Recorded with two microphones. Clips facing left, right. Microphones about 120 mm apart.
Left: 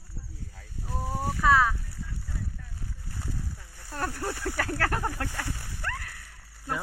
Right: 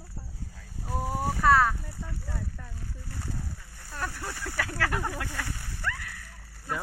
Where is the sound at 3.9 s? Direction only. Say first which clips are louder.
Left 3 dB; 40° left (ahead or behind).